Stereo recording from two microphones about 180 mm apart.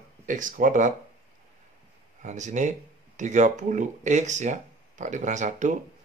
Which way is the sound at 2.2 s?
40° right (ahead or behind).